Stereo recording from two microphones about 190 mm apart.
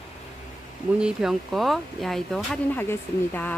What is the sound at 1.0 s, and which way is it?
Speech, 5° right (ahead or behind).